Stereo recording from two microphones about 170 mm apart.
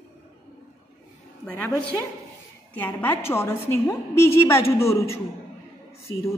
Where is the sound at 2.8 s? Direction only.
10° left (ahead or behind).